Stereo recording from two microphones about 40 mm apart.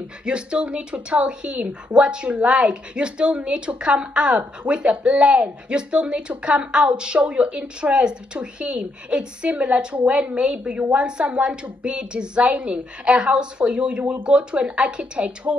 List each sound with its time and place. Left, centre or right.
0.2 s speech: right
10.7 s a woman's voice: right
11.0 s speech: right